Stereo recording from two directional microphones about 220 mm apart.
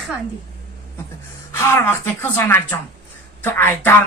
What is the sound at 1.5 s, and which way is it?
A woman's voice, 10° left (ahead or behind).